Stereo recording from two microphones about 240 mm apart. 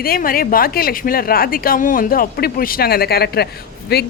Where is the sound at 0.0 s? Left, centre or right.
Left.